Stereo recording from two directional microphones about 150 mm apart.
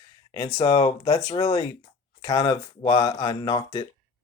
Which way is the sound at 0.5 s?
20° left (ahead or behind).